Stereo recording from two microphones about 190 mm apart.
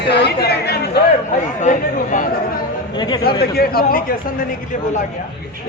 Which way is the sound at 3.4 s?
55° left (ahead or behind).